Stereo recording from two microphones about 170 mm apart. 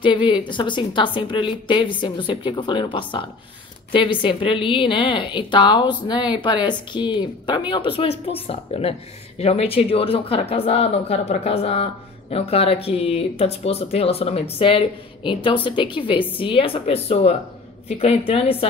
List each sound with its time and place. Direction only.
0.0 s a woman's voice: 30° left (ahead or behind)